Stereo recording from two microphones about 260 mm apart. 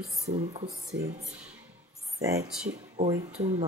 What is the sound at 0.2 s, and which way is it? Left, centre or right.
Speech, right.